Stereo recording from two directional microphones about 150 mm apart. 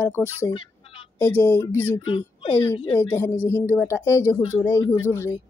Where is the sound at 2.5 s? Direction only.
15° left (ahead or behind).